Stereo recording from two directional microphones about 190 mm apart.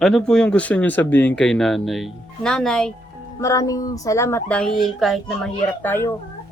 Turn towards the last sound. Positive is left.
turn(degrees=10)  # may be behind; listen again after turning